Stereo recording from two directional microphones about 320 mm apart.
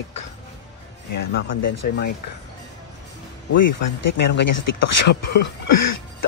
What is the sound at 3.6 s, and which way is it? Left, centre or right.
Speech, left.